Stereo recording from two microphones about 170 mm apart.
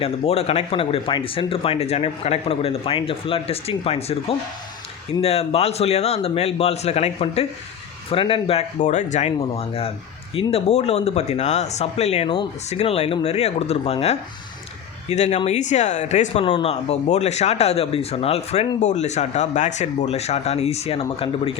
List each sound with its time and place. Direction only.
0.0 s speech: 35° left (ahead or behind)